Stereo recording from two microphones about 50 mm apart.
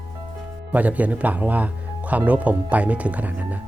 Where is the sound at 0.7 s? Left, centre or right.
Right.